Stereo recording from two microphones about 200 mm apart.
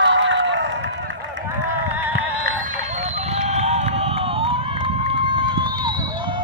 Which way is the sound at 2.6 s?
40° right (ahead or behind).